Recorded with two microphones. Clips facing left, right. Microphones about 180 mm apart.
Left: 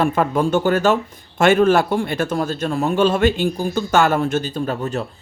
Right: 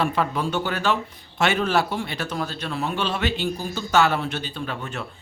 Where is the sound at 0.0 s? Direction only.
45° left (ahead or behind).